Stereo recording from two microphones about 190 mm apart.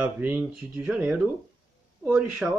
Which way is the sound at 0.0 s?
10° right (ahead or behind).